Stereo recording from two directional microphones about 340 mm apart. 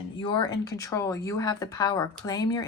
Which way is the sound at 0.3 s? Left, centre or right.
Centre.